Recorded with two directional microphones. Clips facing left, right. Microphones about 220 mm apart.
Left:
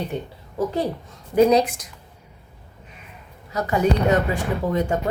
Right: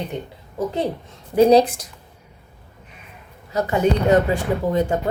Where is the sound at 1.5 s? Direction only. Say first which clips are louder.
Right 4 dB; 30° right (ahead or behind).